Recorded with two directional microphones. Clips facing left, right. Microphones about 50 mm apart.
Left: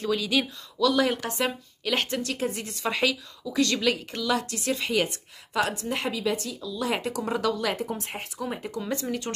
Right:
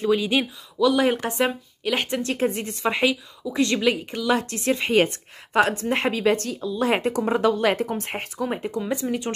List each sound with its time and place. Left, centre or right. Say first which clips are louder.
0.0 s a woman's voice: right 4 dB; right
2.2 s a woman's voice: right 6 dB; right; by 4.3 s centre
4.3 s a woman's voice: right 5 dB; right
6.6 s a woman's voice: right 6 dB; right
8.5 s a woman's voice: right 4 dB; right